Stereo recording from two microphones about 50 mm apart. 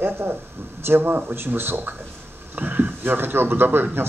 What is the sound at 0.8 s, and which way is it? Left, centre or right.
Speech, right.